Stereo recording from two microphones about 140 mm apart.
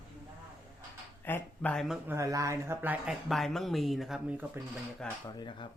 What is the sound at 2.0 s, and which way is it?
Speech, 20° right (ahead or behind).